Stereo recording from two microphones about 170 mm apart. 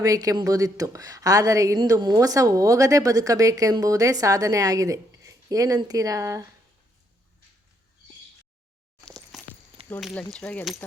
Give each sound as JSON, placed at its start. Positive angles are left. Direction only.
{"t": 0.0, "sound": "a woman's voice", "side_deg": -20}
{"t": 9.0, "sound": "a sound", "side_deg": 5}
{"t": 10.0, "sound": "speech", "side_deg": 0}